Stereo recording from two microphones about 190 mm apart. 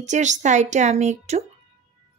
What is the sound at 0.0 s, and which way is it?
Speech, 40° right (ahead or behind).